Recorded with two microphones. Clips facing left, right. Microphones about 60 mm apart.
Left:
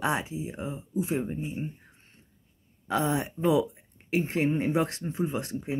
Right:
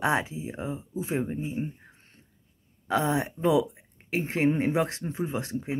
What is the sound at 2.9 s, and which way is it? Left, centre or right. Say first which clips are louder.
Speech: right 1 dB; right.